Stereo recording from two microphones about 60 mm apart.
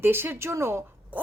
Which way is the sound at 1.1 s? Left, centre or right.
Right.